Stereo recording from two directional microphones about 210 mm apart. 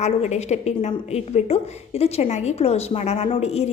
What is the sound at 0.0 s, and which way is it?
A woman's voice, 30° left (ahead or behind).